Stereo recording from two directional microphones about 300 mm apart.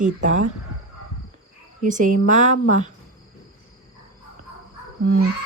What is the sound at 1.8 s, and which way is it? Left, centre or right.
Speech, right.